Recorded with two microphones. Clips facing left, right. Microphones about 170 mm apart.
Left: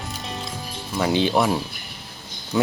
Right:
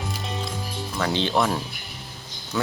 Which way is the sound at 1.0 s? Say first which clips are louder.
Left 3 dB; 15° left (ahead or behind).